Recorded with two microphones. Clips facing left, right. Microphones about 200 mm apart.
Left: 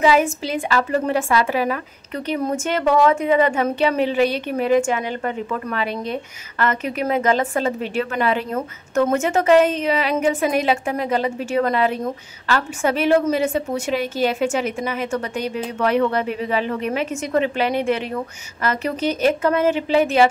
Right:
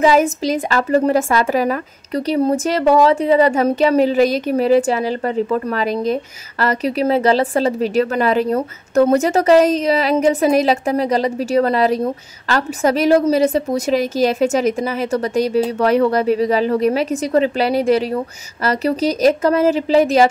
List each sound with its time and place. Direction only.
0.0 s a woman's voice: 40° right (ahead or behind)